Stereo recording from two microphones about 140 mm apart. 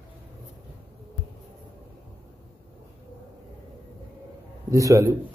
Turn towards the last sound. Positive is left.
turn(degrees=-25)  # may be behind; listen again after turning